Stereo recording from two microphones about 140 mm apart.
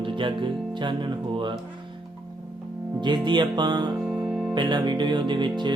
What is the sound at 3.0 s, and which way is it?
Speech, 35° right (ahead or behind).